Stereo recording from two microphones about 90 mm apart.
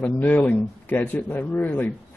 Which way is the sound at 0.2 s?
15° left (ahead or behind).